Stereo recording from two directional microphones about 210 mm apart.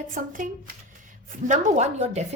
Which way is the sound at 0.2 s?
35° right (ahead or behind).